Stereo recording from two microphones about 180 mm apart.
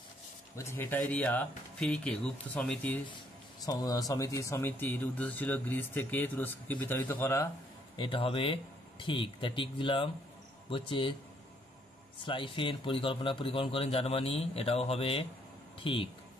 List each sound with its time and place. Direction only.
0.6 s speech: 15° left (ahead or behind)
3.6 s speech: 20° left (ahead or behind)
7.9 s speech: 30° left (ahead or behind)
12.3 s speech: 30° left (ahead or behind)